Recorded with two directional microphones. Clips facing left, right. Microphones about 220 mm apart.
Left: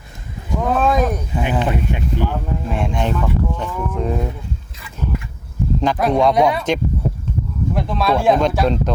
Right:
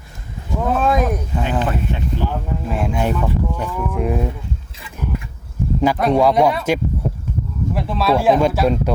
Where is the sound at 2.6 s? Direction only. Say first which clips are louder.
Right 2 dB; 5° right (ahead or behind).